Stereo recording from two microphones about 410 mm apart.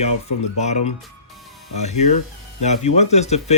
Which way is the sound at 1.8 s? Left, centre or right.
Centre.